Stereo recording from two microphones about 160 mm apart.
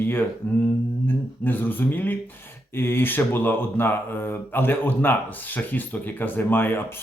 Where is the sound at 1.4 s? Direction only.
10° left (ahead or behind).